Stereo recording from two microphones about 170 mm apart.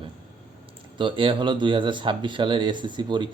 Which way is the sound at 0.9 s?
30° right (ahead or behind).